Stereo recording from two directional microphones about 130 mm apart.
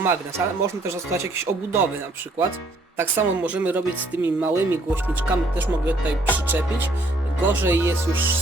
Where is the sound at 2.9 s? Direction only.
15° right (ahead or behind).